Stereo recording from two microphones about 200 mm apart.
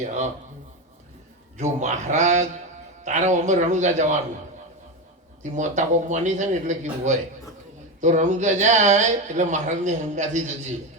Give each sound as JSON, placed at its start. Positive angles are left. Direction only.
{"t": 0.0, "sound": "speech", "side_deg": -35}
{"t": 1.5, "sound": "speech", "side_deg": -35}
{"t": 5.4, "sound": "speech", "side_deg": -35}